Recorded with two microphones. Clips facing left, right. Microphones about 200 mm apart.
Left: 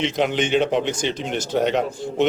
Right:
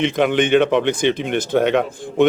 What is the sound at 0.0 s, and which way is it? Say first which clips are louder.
A man's voice: right 4 dB; 55° right (ahead or behind).